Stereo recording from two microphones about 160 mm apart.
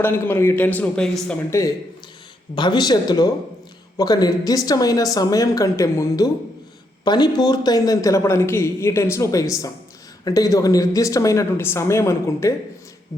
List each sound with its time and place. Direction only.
0.0 s a man's voice: 15° left (ahead or behind)
1.5 s speech: 20° left (ahead or behind)